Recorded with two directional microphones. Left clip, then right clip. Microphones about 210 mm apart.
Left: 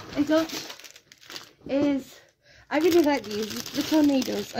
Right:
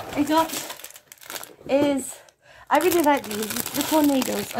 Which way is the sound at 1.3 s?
30° right (ahead or behind).